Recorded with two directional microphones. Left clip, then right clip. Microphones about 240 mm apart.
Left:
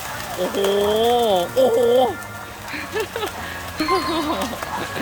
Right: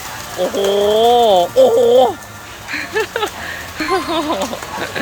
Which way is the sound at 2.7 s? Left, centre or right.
Centre.